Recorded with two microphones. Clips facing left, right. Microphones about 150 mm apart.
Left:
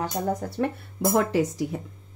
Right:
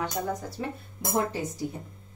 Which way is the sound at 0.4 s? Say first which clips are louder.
Left 7 dB; 60° left (ahead or behind).